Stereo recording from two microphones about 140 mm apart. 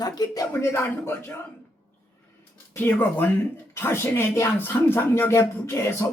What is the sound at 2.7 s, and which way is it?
Speech, 15° left (ahead or behind).